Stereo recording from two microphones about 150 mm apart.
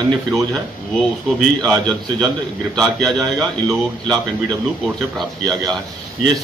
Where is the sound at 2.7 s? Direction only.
Centre (ahead or behind).